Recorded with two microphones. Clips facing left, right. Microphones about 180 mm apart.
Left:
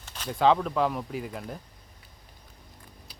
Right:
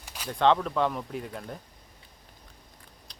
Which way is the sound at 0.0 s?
10° right (ahead or behind).